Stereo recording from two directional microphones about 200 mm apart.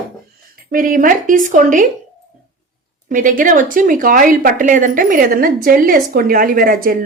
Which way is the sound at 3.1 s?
40° right (ahead or behind).